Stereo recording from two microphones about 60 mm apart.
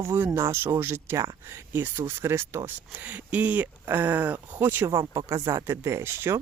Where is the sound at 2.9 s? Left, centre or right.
Right.